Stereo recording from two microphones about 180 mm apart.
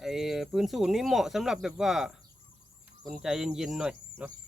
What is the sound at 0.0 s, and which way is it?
Speech, centre (ahead or behind).